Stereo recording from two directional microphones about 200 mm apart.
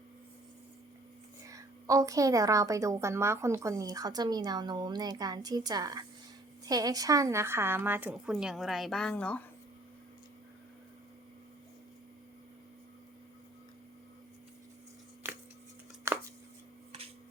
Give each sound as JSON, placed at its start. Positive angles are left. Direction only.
{"t": 1.5, "sound": "a woman's voice", "side_deg": -15}
{"t": 16.1, "sound": "chopping", "side_deg": -15}